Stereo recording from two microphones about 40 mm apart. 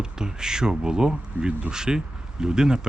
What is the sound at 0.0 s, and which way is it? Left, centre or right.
Speech, centre.